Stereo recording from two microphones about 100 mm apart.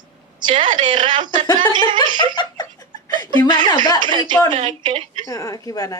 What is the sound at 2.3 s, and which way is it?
Giggle, 45° left (ahead or behind).